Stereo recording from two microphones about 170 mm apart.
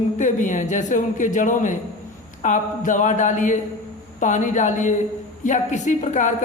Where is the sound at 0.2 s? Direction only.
50° left (ahead or behind).